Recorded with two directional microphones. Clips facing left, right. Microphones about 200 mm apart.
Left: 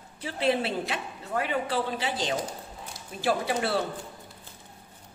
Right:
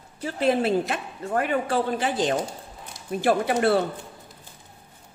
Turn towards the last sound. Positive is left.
turn(degrees=-55)  # may be behind; listen again after turning